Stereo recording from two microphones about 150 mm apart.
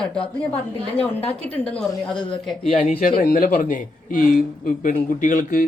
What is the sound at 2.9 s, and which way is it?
Speech, 70° left (ahead or behind).